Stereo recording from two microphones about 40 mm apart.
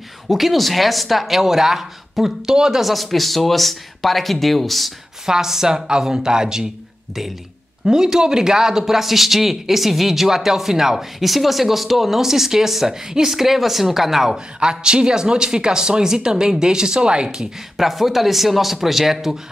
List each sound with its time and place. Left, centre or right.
0.3 s a man's voice: centre
2.8 s speech: centre
5.2 s a man's voice: centre
7.8 s a man's voice: centre
14.6 s speech: right
17.7 s speech: centre